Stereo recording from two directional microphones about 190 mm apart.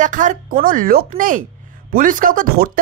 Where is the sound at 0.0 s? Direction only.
40° right (ahead or behind).